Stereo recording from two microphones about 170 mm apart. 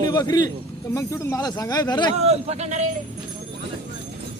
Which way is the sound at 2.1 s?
40° right (ahead or behind).